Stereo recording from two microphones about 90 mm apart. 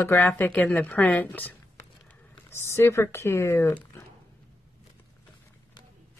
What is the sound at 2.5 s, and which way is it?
Speech, 30° left (ahead or behind).